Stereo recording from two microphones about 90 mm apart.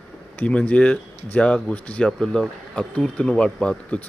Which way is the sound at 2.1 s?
5° left (ahead or behind).